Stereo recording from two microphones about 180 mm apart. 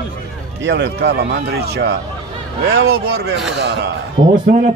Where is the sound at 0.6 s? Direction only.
75° right (ahead or behind).